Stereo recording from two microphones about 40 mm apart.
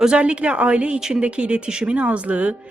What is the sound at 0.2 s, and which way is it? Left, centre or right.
Speech, right.